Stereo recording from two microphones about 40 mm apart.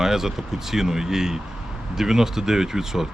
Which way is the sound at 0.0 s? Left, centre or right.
Centre.